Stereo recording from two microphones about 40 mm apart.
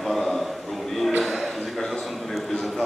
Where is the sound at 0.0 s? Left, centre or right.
Centre.